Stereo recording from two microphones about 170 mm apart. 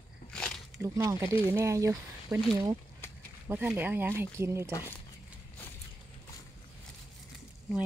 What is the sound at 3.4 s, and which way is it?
Speech, 10° right (ahead or behind).